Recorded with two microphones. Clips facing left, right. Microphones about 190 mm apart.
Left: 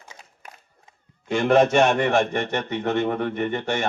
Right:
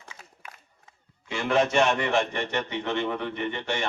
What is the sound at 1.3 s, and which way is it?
A man's voice, 50° left (ahead or behind).